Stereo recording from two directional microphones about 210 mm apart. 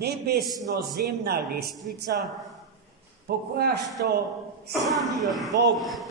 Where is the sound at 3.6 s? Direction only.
50° right (ahead or behind).